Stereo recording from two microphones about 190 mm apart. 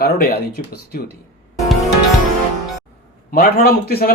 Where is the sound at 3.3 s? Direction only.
50° left (ahead or behind).